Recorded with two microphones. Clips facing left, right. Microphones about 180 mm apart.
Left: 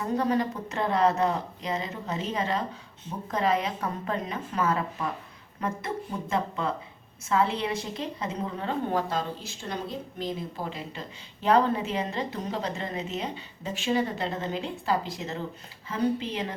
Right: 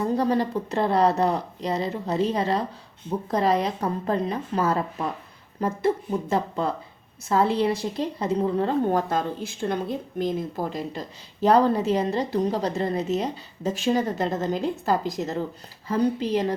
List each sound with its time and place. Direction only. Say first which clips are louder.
0.0 s a woman's voice: right 3 dB; 35° right (ahead or behind)